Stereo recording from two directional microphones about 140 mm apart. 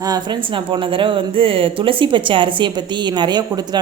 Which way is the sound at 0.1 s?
35° right (ahead or behind).